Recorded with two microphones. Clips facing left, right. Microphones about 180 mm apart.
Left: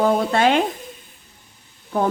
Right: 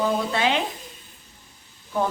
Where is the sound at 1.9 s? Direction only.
50° left (ahead or behind).